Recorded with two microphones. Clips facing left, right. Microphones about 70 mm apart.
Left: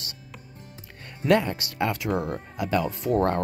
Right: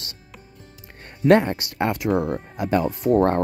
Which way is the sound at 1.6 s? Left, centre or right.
Right.